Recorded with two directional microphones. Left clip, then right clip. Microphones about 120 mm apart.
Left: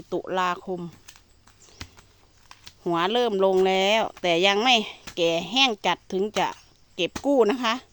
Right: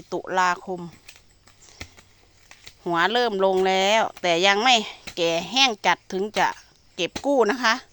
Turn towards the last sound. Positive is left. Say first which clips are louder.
# right 1 dB
turn(degrees=30)  # may be behind; listen again after turning